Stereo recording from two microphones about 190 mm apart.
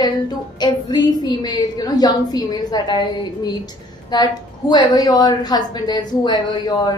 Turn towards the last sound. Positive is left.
turn(degrees=20)  # may be behind; listen again after turning